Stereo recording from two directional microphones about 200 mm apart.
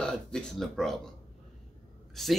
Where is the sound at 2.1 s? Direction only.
Centre (ahead or behind).